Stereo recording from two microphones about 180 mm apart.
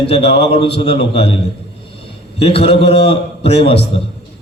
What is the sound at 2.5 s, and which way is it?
Speech, 35° left (ahead or behind).